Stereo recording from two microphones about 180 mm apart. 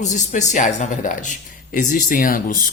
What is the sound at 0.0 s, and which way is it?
Speech, 40° left (ahead or behind).